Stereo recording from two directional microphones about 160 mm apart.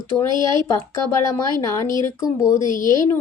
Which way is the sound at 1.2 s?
20° left (ahead or behind).